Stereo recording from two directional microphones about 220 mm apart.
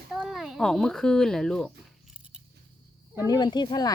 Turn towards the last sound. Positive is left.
turn(degrees=20)  # may be behind; listen again after turning